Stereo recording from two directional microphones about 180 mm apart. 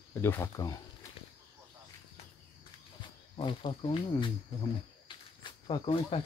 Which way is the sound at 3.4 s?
30° left (ahead or behind).